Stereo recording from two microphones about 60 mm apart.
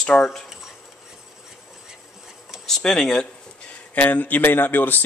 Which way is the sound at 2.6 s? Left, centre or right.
Centre.